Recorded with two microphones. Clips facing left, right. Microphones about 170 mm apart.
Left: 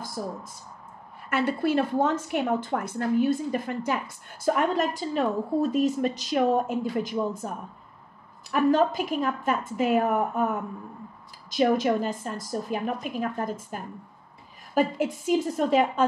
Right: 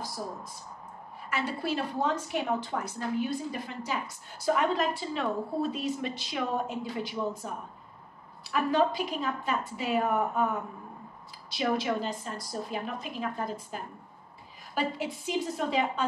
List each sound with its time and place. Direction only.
1.3 s a woman's voice: 55° left (ahead or behind)
8.5 s a woman's voice: 45° left (ahead or behind)
11.5 s a woman's voice: 45° left (ahead or behind)